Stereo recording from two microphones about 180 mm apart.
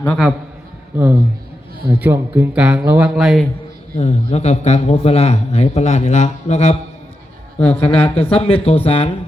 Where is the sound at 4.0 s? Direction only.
40° left (ahead or behind).